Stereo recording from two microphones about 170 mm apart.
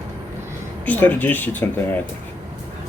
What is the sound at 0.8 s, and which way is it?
Speech, 10° left (ahead or behind).